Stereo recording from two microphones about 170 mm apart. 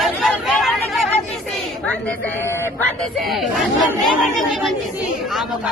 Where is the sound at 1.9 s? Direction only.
10° left (ahead or behind).